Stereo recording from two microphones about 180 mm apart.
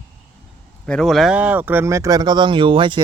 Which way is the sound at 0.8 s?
Centre (ahead or behind).